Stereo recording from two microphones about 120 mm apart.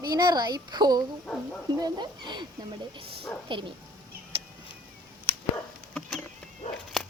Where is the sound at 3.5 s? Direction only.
45° right (ahead or behind).